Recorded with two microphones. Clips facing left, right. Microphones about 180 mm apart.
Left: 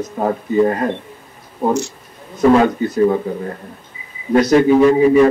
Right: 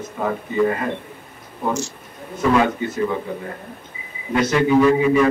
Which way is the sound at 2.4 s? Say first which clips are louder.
Left 6 dB; 35° left (ahead or behind).